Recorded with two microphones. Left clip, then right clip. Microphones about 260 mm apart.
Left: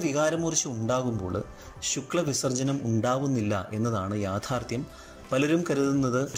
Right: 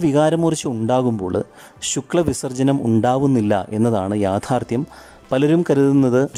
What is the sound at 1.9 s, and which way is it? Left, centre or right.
Speech, right.